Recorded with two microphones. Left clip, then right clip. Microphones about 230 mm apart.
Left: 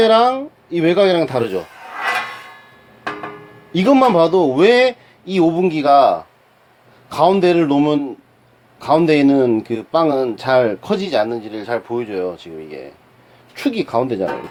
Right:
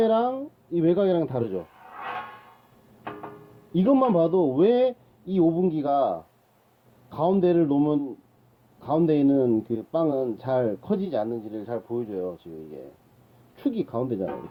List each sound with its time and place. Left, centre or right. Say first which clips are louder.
0.0 s speech: left 10 dB; left
3.7 s speech: left 9 dB; left